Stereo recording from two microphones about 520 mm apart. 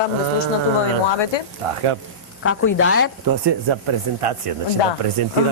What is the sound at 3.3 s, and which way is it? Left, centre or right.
Speech, right.